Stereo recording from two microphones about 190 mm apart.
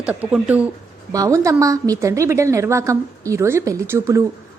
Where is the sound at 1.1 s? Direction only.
15° right (ahead or behind).